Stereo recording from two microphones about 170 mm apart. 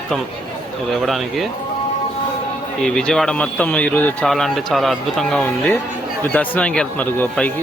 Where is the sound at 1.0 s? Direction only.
Centre (ahead or behind).